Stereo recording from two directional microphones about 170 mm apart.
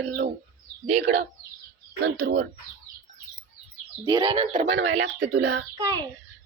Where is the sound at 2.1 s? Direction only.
90° right.